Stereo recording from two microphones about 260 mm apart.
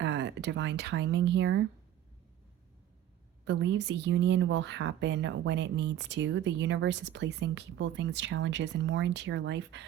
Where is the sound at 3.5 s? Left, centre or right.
Right.